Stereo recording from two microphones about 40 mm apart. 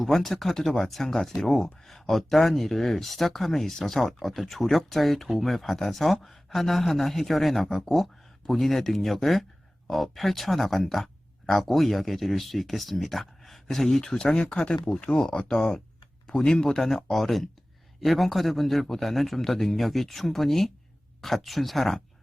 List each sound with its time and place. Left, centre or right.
0.0 s speech: centre